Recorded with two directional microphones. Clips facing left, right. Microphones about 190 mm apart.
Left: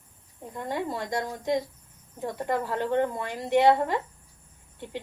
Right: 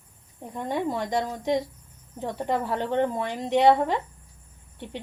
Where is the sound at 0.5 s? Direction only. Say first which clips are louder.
Right 3 dB; 20° right (ahead or behind).